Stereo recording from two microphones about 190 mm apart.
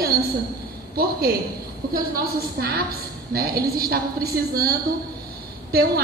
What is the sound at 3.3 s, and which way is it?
A woman's voice, 50° right (ahead or behind).